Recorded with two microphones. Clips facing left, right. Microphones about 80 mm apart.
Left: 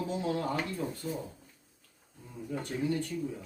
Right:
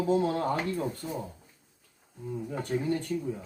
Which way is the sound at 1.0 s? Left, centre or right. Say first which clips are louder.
Right 1 dB; right.